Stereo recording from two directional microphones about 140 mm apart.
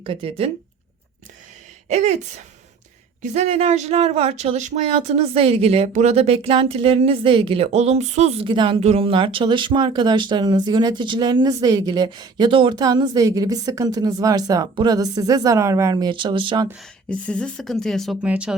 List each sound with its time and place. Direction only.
0.0 s speech: 40° right (ahead or behind)
1.9 s speech: 55° right (ahead or behind); by 16.6 s 35° right (ahead or behind)
16.7 s speech: 5° left (ahead or behind)